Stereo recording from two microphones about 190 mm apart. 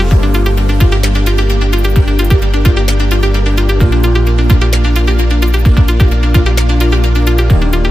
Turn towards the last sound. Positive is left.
turn(degrees=0)  # may be behind; listen again after turning